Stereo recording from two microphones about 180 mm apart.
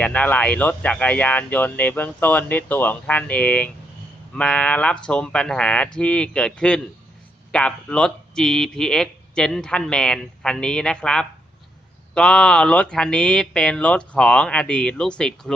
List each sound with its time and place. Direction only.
0.0 s speech: 10° left (ahead or behind)